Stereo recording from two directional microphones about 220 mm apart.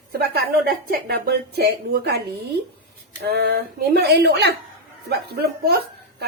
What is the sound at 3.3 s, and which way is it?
A woman's voice, 45° right (ahead or behind).